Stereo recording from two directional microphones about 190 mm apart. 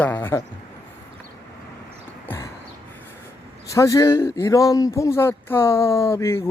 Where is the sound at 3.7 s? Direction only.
15° left (ahead or behind).